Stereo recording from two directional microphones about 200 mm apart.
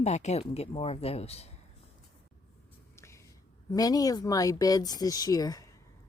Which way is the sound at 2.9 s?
15° left (ahead or behind).